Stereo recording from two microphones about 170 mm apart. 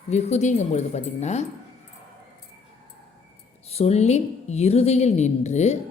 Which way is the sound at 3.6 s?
35° left (ahead or behind).